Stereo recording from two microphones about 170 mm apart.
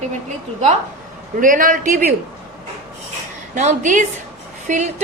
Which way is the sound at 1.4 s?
50° right (ahead or behind).